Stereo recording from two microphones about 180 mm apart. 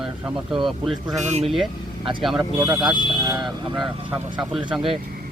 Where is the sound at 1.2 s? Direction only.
40° right (ahead or behind).